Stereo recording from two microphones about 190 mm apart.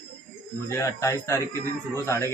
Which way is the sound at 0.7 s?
15° left (ahead or behind).